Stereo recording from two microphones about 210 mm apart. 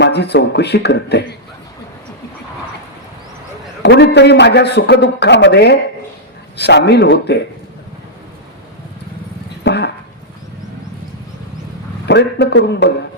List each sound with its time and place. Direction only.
0.0 s a man's voice: 55° left (ahead or behind)
3.8 s a man's voice: 55° left (ahead or behind)
9.6 s a sound: 50° left (ahead or behind)
12.0 s a man's voice: 55° left (ahead or behind)